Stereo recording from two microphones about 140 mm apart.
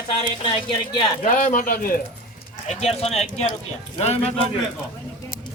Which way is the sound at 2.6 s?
50° left (ahead or behind).